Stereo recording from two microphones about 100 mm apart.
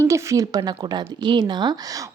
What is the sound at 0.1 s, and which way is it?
Speech, 35° right (ahead or behind).